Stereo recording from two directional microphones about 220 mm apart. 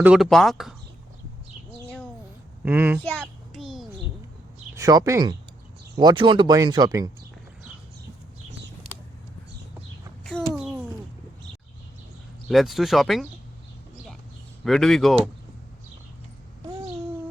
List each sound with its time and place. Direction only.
0.0 s speech: centre (ahead or behind)
2.6 s speech: 10° right (ahead or behind)
3.1 s a sound: centre (ahead or behind)
4.7 s speech: 15° right (ahead or behind)
10.2 s a sound: centre (ahead or behind)
12.5 s speech: centre (ahead or behind)
14.6 s speech: centre (ahead or behind)